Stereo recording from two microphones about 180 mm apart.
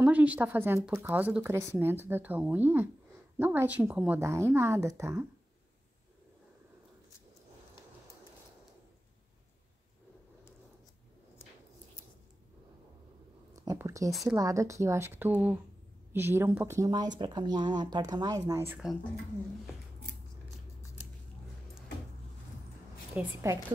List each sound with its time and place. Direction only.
0.0 s speech: 10° right (ahead or behind)
13.5 s a sound: 20° right (ahead or behind)
14.2 s a woman's voice: 15° right (ahead or behind)
23.1 s speech: 15° right (ahead or behind)